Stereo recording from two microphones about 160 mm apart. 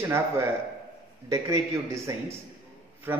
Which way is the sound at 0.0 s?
15° right (ahead or behind).